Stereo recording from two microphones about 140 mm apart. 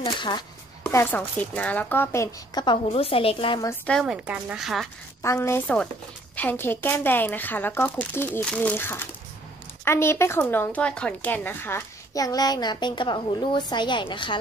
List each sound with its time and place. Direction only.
0.0 s speech: 35° left (ahead or behind)
0.8 s speech: 15° left (ahead or behind)
2.6 s speech: 40° left (ahead or behind)
3.8 s speech: 5° left (ahead or behind)
4.1 s speech: 5° right (ahead or behind)
5.2 s a child's voice: 20° left (ahead or behind); by 14.3 s 35° left (ahead or behind)